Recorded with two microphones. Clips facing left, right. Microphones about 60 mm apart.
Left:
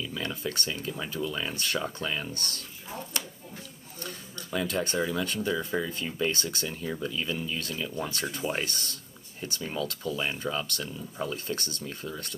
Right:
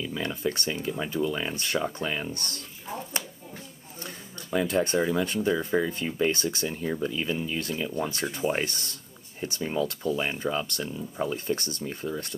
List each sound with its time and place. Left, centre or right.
0.0 s speech: centre
4.0 s a sound: centre
4.9 s speech: right